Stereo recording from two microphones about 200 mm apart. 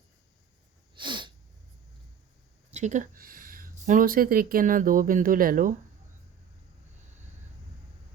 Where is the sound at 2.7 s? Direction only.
35° right (ahead or behind).